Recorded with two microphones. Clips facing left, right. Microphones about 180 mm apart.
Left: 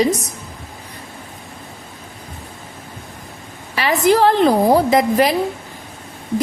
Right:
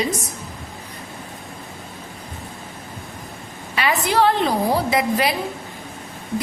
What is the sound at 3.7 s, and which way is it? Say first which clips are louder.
A woman's voice: left 5 dB; 40° left (ahead or behind).